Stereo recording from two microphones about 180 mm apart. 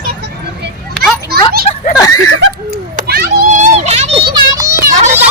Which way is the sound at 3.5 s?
40° right (ahead or behind).